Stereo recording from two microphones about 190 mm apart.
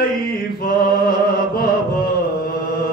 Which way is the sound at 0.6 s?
50° left (ahead or behind).